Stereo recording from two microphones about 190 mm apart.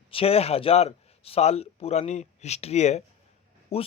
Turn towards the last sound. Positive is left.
turn(degrees=30)  # may be behind; listen again after turning